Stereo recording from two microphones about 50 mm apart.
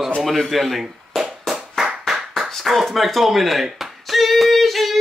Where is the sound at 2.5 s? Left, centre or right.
Centre.